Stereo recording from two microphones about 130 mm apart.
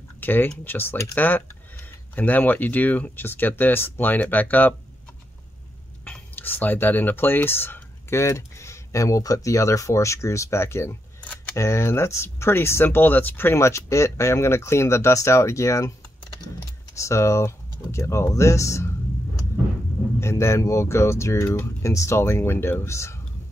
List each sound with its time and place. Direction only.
0.2 s speech: 15° left (ahead or behind)
6.0 s speech: 10° left (ahead or behind)
16.9 s speech: 25° left (ahead or behind)
20.2 s speech: 20° left (ahead or behind)